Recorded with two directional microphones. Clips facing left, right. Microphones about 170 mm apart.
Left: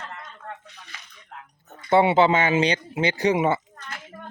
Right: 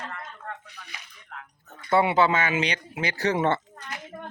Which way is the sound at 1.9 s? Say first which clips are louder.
Left 3 dB; 25° left (ahead or behind).